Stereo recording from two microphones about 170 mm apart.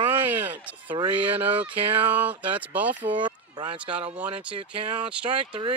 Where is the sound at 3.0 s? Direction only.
30° right (ahead or behind).